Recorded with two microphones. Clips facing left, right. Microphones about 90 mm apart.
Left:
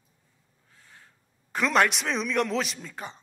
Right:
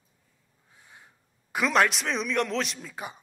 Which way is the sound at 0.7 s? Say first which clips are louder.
Right 1 dB; 15° right (ahead or behind).